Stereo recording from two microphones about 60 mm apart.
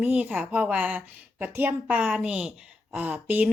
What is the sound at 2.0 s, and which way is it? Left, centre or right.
A woman's voice, centre.